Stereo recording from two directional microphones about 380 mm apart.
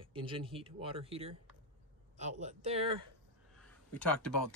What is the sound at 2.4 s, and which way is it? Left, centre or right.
Speech, centre.